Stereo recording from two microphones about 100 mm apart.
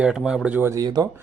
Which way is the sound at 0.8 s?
45° right (ahead or behind).